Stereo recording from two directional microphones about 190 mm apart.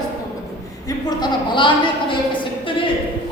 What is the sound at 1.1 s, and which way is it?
Speech, 25° left (ahead or behind).